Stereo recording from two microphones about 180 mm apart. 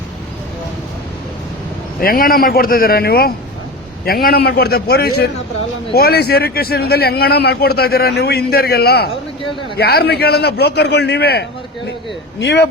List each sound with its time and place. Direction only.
2.0 s a man's voice: 55° left (ahead or behind); by 12.6 s 70° left (ahead or behind)